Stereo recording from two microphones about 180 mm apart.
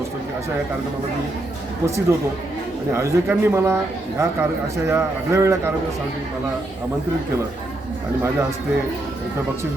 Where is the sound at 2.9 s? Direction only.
15° right (ahead or behind).